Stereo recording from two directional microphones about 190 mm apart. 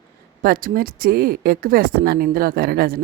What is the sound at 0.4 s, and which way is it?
Speech, 50° right (ahead or behind).